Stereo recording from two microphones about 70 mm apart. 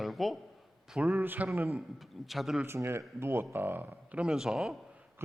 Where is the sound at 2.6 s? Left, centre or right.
Right.